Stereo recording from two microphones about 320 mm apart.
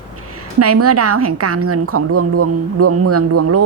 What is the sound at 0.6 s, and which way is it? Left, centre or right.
A woman's voice, right.